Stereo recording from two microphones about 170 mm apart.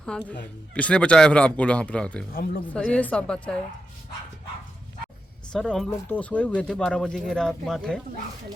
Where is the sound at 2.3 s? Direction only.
60° left (ahead or behind).